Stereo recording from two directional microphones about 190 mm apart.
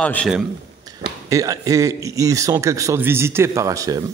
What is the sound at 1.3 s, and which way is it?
Speech, 15° right (ahead or behind).